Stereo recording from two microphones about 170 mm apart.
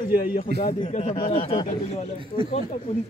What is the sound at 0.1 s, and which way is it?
Speech, 60° left (ahead or behind).